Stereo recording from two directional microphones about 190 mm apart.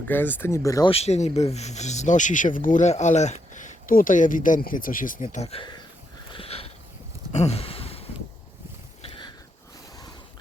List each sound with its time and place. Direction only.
0.1 s speech: 10° left (ahead or behind)
0.9 s speech: 35° left (ahead or behind)
5.3 s speech: 35° left (ahead or behind)
6.3 s sniff: 30° left (ahead or behind)
7.3 s a sound: 35° left (ahead or behind)
9.0 s a sound: 25° left (ahead or behind)